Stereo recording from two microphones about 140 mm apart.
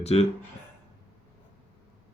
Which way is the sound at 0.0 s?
50° left (ahead or behind).